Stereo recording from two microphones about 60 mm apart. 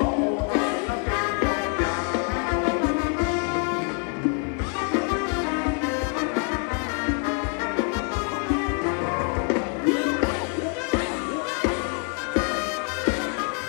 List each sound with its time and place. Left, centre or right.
0.0 s music: centre
7.1 s music: centre